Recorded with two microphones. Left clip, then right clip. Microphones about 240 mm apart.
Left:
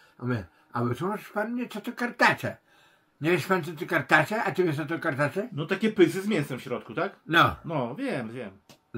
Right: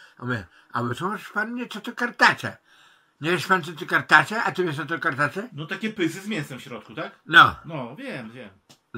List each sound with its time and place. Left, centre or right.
0.2 s speech: centre
5.6 s speech: left
7.2 s speech: centre
7.6 s speech: left